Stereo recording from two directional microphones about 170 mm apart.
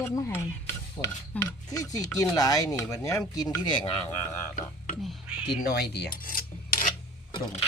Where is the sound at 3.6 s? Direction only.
30° left (ahead or behind).